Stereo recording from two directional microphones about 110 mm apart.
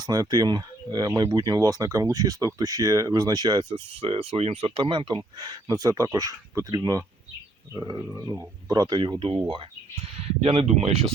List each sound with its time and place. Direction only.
0.0 s speech: 35° right (ahead or behind)
4.0 s speech: 55° right (ahead or behind); by 8.4 s 20° right (ahead or behind)
8.7 s speech: 40° right (ahead or behind)
10.2 s speech: 60° right (ahead or behind)